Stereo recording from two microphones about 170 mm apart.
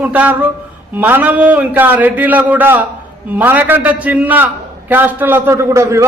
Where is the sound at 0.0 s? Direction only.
10° right (ahead or behind).